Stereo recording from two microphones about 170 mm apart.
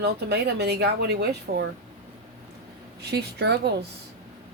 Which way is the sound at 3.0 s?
75° right (ahead or behind).